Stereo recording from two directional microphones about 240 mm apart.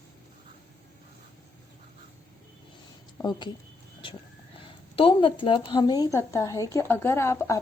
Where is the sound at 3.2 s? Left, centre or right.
Centre.